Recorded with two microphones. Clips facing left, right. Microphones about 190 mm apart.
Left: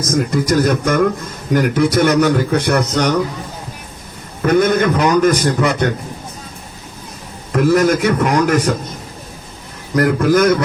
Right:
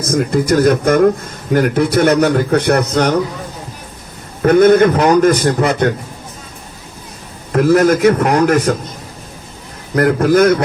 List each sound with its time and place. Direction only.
0.0 s a man's voice: 55° right (ahead or behind)
4.4 s a man's voice: 50° right (ahead or behind)
7.5 s a man's voice: 55° right (ahead or behind)
9.9 s speech: 55° right (ahead or behind)